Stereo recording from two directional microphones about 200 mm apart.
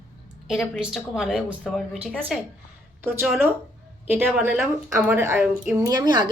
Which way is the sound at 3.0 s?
10° right (ahead or behind).